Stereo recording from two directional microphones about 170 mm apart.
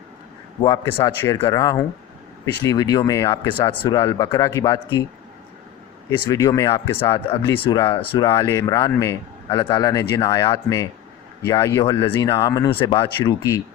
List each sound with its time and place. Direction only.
1.4 s a man's voice: 25° left (ahead or behind)
6.1 s a man's voice: 20° left (ahead or behind)
7.6 s speech: 30° left (ahead or behind)
8.3 s a man's voice: 15° left (ahead or behind)
12.0 s a man's voice: 15° left (ahead or behind)